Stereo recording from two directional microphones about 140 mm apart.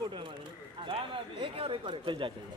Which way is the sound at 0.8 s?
40° right (ahead or behind).